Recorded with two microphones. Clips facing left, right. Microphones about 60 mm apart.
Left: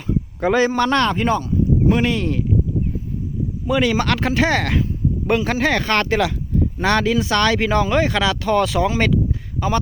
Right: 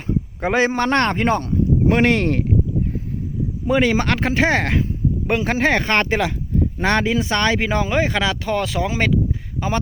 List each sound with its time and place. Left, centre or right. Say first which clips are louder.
0.3 s a man's voice: left 2 dB; right
1.5 s speech: even; right
3.7 s speech: right 1 dB; right
8.4 s speech: left 4 dB; centre